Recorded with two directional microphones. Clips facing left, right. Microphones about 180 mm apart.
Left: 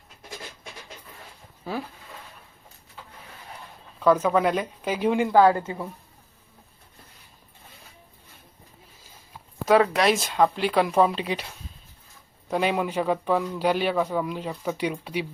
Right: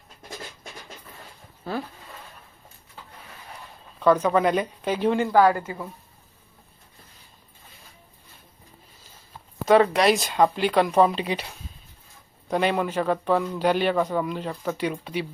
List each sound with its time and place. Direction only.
4.0 s a man's voice: 5° left (ahead or behind)
9.6 s a man's voice: centre (ahead or behind)